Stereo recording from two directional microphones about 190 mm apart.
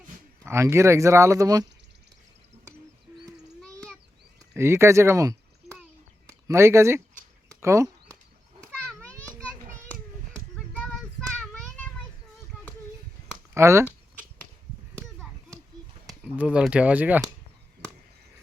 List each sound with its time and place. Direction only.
0.4 s speech: 15° right (ahead or behind)
4.5 s speech: 15° right (ahead or behind)
7.5 s a sound: 15° right (ahead or behind)
8.9 s children playing: 5° left (ahead or behind)
9.9 s hands: 10° left (ahead or behind)
13.5 s speech: 15° right (ahead or behind)
16.2 s speech: 5° right (ahead or behind)